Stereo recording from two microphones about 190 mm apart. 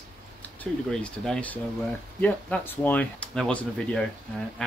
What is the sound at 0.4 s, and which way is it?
Speech, 5° left (ahead or behind).